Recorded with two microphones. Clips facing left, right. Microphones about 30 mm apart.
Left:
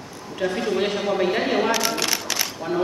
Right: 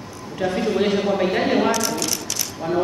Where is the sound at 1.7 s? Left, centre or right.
Left.